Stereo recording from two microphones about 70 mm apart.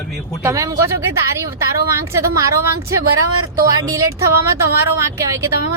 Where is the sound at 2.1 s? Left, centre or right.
Right.